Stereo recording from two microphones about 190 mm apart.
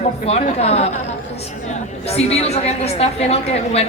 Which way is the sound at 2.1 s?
35° left (ahead or behind).